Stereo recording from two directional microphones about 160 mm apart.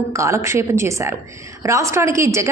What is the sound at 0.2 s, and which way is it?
A woman's voice, 20° right (ahead or behind).